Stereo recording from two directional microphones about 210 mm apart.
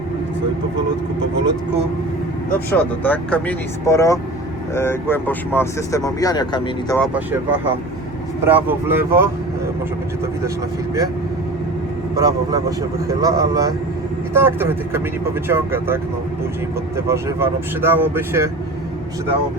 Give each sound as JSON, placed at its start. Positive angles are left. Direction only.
{"t": 2.6, "sound": "speech", "side_deg": 10}
{"t": 8.4, "sound": "speech", "side_deg": -10}
{"t": 12.2, "sound": "speech", "side_deg": -15}
{"t": 17.1, "sound": "speech", "side_deg": -10}